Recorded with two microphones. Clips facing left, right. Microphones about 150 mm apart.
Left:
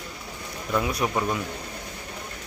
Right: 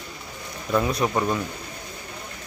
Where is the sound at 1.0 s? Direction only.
5° left (ahead or behind).